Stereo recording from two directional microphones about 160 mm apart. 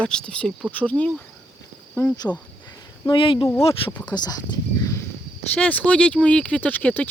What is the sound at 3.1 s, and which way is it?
Speech, 30° left (ahead or behind).